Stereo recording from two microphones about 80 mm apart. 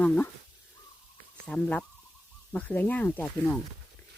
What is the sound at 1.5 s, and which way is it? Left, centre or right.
Speech, centre.